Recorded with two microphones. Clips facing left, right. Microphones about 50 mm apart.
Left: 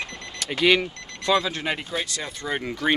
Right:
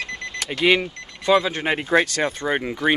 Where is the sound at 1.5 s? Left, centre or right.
Right.